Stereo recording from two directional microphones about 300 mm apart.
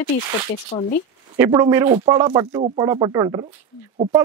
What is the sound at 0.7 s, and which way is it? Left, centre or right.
Speech, left.